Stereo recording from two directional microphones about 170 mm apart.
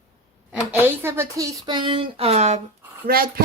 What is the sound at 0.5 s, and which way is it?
Speech, 10° right (ahead or behind).